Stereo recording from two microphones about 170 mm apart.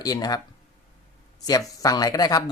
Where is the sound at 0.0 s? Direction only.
20° left (ahead or behind).